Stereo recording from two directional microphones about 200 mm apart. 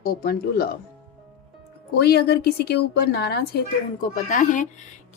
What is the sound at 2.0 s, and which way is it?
A woman's voice, 55° left (ahead or behind).